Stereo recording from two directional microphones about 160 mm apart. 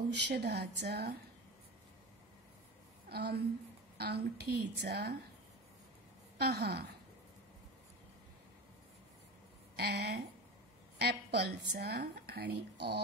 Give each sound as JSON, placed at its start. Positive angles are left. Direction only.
{"t": 0.3, "sound": "a woman's voice", "side_deg": -90}
{"t": 3.1, "sound": "a woman's voice", "side_deg": -80}
{"t": 6.3, "sound": "a woman's voice", "side_deg": -80}
{"t": 9.8, "sound": "a woman's voice", "side_deg": -85}